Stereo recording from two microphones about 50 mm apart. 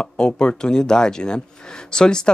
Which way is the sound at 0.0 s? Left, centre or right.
Centre.